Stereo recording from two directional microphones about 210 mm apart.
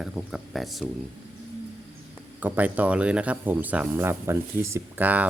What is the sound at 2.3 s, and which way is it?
Speech, 10° right (ahead or behind).